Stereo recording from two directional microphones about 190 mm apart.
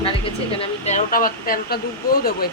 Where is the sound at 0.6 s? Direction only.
40° left (ahead or behind).